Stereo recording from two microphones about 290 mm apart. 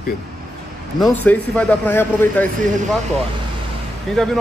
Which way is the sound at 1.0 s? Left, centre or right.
Centre.